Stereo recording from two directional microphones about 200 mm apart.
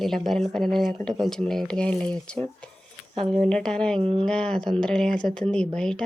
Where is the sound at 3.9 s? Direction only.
25° right (ahead or behind).